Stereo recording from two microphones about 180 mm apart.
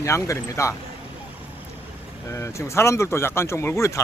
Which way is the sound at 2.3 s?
15° left (ahead or behind).